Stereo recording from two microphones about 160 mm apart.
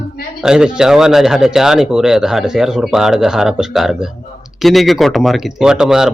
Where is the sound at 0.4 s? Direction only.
5° right (ahead or behind).